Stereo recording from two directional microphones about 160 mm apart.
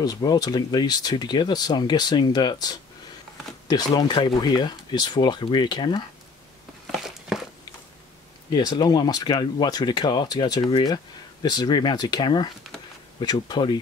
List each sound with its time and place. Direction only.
0.0 s speech: 25° left (ahead or behind)
6.9 s a sound: centre (ahead or behind)
8.5 s speech: 25° left (ahead or behind)